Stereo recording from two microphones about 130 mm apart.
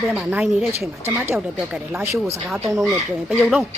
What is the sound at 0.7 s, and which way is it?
Speech, 20° right (ahead or behind).